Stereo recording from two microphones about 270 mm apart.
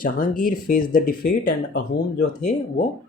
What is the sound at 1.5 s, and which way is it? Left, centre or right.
Speech, left.